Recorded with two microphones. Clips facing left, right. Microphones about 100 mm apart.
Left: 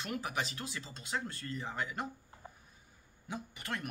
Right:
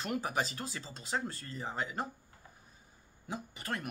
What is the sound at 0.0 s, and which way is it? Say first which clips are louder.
Speech: right 3 dB; 35° right (ahead or behind).